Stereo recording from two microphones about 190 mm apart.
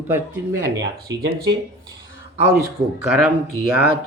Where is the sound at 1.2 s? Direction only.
55° right (ahead or behind).